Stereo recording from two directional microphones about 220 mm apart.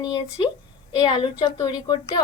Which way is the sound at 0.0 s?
15° left (ahead or behind).